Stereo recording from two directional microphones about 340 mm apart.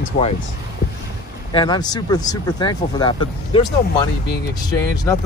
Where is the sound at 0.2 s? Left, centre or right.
Centre.